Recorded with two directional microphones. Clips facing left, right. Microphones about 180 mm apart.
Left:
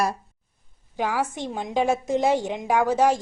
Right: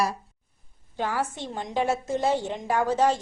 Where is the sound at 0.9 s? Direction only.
10° left (ahead or behind).